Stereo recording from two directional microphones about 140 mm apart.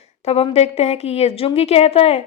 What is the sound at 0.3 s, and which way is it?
A woman's voice, 45° left (ahead or behind).